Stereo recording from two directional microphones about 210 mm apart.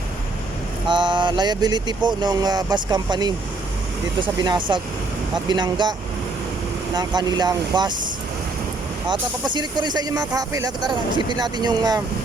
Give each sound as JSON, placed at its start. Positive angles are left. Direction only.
{"t": 0.9, "sound": "speech", "side_deg": -20}
{"t": 6.9, "sound": "speech", "side_deg": -20}
{"t": 9.0, "sound": "speech", "side_deg": -20}